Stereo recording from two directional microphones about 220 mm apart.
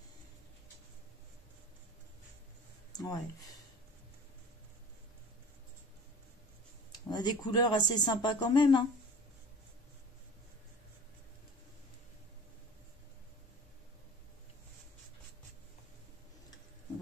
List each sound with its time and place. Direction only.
2.9 s speech: 15° left (ahead or behind)
7.1 s speech: 20° left (ahead or behind)